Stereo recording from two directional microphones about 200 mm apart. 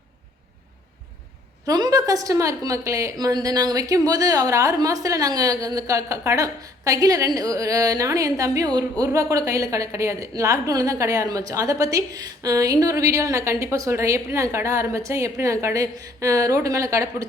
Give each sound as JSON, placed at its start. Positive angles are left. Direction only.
{"t": 1.6, "sound": "a woman's voice", "side_deg": -20}